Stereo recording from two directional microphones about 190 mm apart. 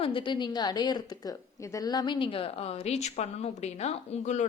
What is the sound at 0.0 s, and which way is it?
A woman's voice, 25° left (ahead or behind).